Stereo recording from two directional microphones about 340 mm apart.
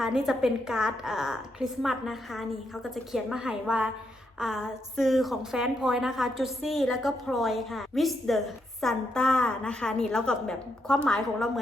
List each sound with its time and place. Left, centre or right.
0.0 s a woman's voice: centre